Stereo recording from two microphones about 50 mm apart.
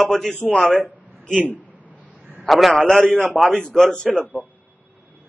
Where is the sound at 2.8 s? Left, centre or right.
Centre.